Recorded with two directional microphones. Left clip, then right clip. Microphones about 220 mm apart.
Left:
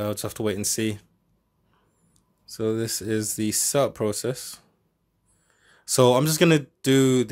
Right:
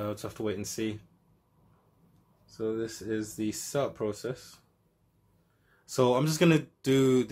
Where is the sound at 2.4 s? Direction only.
50° left (ahead or behind).